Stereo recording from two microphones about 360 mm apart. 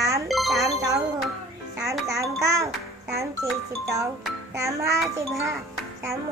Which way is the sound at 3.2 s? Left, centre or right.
Centre.